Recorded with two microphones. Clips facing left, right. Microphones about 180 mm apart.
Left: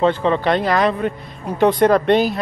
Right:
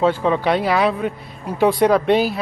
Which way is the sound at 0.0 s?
5° right (ahead or behind).